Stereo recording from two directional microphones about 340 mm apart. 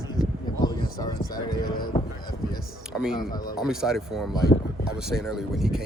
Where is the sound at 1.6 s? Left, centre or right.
Left.